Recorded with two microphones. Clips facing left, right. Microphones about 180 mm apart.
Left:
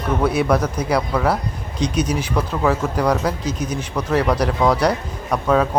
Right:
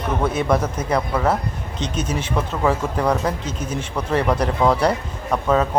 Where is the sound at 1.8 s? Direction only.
25° right (ahead or behind).